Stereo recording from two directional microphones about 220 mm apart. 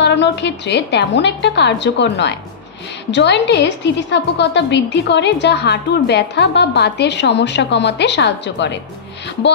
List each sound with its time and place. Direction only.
0.0 s a woman's voice: 55° left (ahead or behind)